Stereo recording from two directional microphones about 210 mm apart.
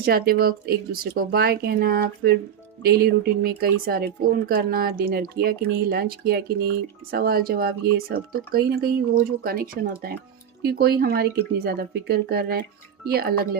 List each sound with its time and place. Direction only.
0.0 s speech: 45° right (ahead or behind)